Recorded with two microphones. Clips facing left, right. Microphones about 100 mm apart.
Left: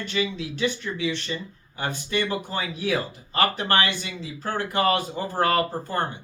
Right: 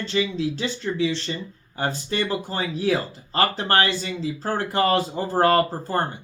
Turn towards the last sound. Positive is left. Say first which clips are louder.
# right 3 dB
turn(degrees=-35)  # may be behind; listen again after turning